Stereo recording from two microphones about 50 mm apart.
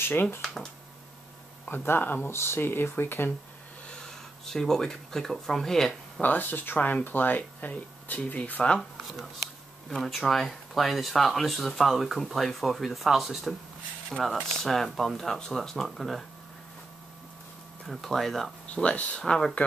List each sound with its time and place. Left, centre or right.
0.0 s speech: left
1.7 s speech: left
2.3 s speech: left
4.0 s speech: centre
6.2 s speech: left
8.7 s speech: centre
17.8 s speech: centre
18.8 s speech: left
19.2 s speech: centre